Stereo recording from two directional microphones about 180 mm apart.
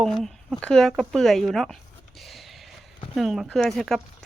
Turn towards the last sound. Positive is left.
turn(degrees=0)  # may be behind; listen again after turning